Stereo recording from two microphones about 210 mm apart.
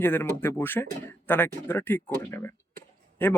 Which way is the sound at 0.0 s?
10° left (ahead or behind).